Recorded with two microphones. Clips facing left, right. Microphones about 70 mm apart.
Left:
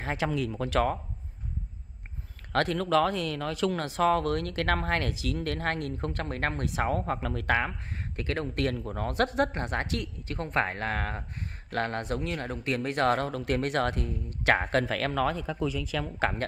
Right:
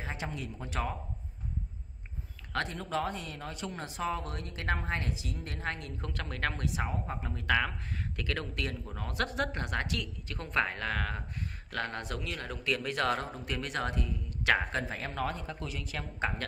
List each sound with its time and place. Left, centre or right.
0.0 s speech: left
2.5 s speech: left
7.4 s speech: left
8.6 s speech: left
13.2 s speech: left